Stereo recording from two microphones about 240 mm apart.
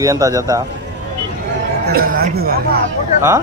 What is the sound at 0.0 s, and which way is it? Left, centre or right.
Speech, centre.